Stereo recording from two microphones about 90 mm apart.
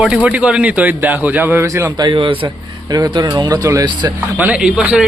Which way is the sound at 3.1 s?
55° right (ahead or behind).